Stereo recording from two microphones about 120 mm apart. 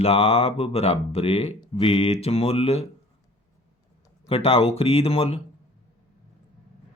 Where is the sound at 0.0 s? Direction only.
55° left (ahead or behind).